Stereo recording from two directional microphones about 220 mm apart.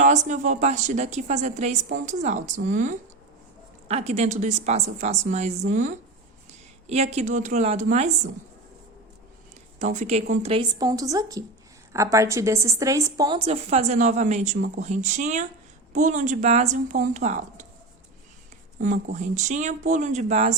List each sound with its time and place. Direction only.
0.0 s a woman's voice: 35° right (ahead or behind)
9.7 s a woman's voice: 30° right (ahead or behind)
18.8 s a woman's voice: 35° right (ahead or behind)